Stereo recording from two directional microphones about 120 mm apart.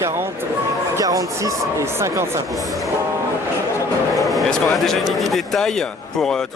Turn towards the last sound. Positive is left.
turn(degrees=5)  # may be behind; listen again after turning